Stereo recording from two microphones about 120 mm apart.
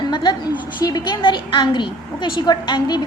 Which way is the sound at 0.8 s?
35° left (ahead or behind).